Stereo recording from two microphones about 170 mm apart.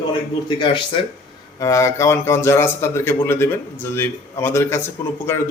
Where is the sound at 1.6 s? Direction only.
15° left (ahead or behind).